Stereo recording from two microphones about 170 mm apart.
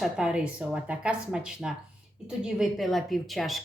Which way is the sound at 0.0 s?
5° right (ahead or behind).